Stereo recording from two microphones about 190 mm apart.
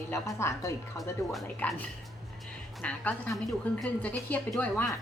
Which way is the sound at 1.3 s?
5° left (ahead or behind).